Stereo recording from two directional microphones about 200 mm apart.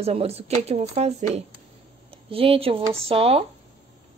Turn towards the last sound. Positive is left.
turn(degrees=-30)  # may be behind; listen again after turning